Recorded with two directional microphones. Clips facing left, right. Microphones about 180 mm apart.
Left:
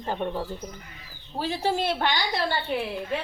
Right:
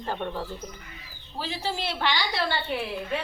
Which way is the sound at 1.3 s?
55° left (ahead or behind).